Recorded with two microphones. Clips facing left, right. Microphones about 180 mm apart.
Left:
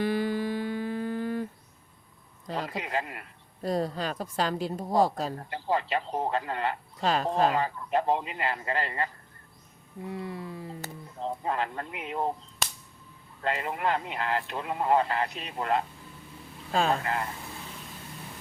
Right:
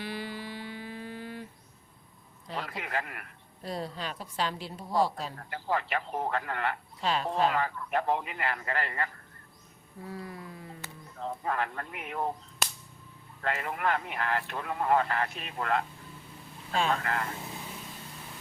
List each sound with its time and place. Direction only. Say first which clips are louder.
0.0 s humming: left 10 dB; 50° left (ahead or behind)
2.6 s speech: left 3 dB; 20° left (ahead or behind)
3.6 s a woman's voice: left 7 dB; 45° left (ahead or behind)
5.4 s speech: even; 20° left (ahead or behind)
7.0 s a woman's voice: left 3 dB; 45° left (ahead or behind)
7.5 s speech: left 3 dB; 20° left (ahead or behind)
10.0 s a sound: left 5 dB; 25° left (ahead or behind)
11.2 s speech: left 2 dB; 20° left (ahead or behind)
12.6 s whip: even; centre (ahead or behind)
13.4 s speech: left 2 dB; 20° left (ahead or behind)
16.7 s speech: left 3 dB; 40° left (ahead or behind)
17.0 s speech: left 2 dB; 20° left (ahead or behind)